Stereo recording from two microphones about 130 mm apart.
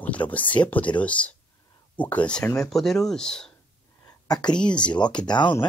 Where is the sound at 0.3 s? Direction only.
10° left (ahead or behind).